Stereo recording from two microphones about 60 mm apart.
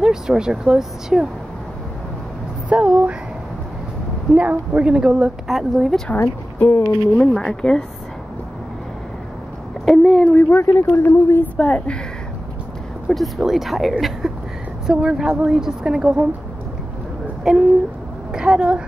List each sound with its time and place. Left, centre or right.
0.0 s speech: centre
2.7 s speech: centre
4.4 s a woman's voice: right
5.5 s speech: centre
6.1 s a woman's voice: left
6.8 s speech: centre
9.8 s speech: centre
10.3 s speech: left
11.4 s a woman's voice: left
13.1 s speech: centre
17.4 s a woman's voice: centre